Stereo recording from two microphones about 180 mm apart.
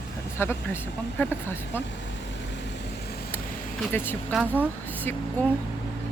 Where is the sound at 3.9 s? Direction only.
10° left (ahead or behind).